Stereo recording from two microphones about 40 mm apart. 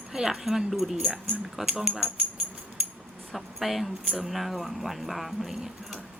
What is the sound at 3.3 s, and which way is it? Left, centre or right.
Speech, centre.